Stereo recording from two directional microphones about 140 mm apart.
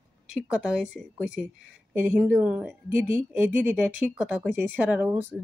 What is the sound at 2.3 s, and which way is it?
Speech, 10° right (ahead or behind).